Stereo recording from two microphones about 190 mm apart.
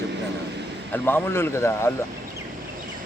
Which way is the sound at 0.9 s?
10° left (ahead or behind).